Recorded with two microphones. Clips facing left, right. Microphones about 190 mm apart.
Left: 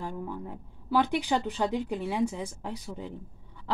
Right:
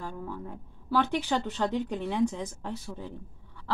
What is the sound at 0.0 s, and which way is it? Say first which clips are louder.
Speech: left 2 dB; 15° left (ahead or behind).